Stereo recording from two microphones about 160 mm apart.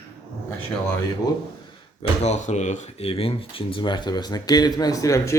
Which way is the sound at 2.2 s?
45° left (ahead or behind).